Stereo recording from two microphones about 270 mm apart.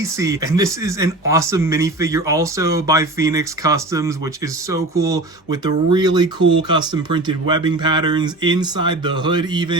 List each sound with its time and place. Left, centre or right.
0.0 s speech: centre